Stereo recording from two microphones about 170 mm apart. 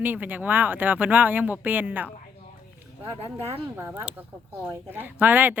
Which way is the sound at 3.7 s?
15° right (ahead or behind).